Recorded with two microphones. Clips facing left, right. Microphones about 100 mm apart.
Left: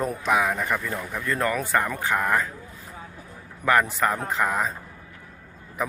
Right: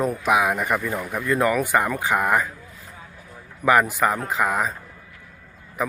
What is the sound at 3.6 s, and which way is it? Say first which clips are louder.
Speech: right 3 dB; 10° right (ahead or behind).